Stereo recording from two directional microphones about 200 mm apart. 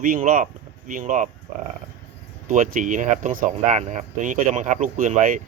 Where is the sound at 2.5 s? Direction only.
40° right (ahead or behind).